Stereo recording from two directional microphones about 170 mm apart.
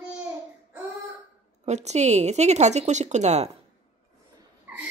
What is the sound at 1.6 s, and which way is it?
Speech, 40° right (ahead or behind).